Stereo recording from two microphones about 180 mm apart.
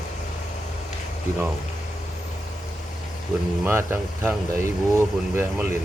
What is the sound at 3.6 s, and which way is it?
Speech, 10° right (ahead or behind).